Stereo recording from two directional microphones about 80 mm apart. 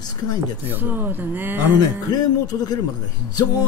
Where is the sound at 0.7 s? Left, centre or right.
Right.